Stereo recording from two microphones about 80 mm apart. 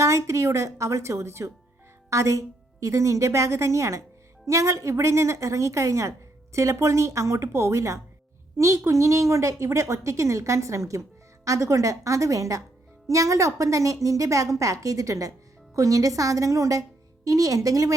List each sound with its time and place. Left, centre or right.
0.0 s a woman's voice: right